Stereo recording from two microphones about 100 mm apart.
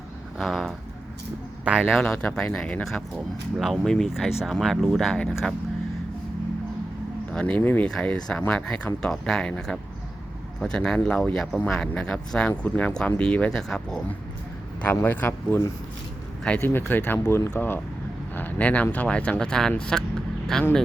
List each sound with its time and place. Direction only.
0.3 s speech: centre (ahead or behind)
2.0 s speech: 10° left (ahead or behind)
7.3 s speech: 10° left (ahead or behind)
7.9 s speech: 5° left (ahead or behind)
15.0 s speech: 15° left (ahead or behind)
16.6 s speech: 20° left (ahead or behind)